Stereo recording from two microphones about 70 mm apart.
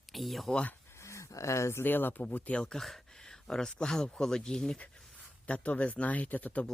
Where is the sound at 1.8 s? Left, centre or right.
Left.